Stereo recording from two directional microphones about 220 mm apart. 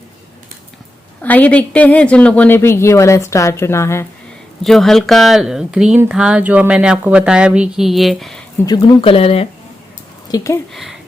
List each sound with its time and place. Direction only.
1.2 s a woman's voice: 10° left (ahead or behind)
4.6 s speech: centre (ahead or behind)
8.6 s speech: 20° left (ahead or behind)
10.2 s speech: 15° left (ahead or behind)